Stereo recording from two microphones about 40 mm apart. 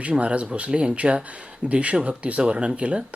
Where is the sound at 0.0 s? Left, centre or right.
Right.